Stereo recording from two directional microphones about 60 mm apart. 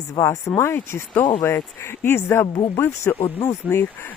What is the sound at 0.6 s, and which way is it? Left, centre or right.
Speech, left.